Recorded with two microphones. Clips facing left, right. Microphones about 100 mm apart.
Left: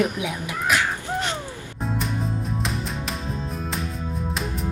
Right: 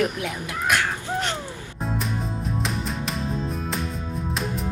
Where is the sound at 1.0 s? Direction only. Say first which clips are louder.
Even; 15° left (ahead or behind).